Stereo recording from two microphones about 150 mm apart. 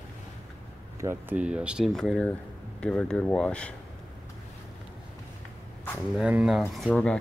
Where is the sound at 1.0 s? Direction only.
15° right (ahead or behind); by 3.8 s 5° left (ahead or behind).